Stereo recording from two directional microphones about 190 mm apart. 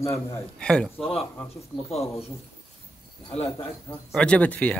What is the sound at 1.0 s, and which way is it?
Speech, 30° left (ahead or behind).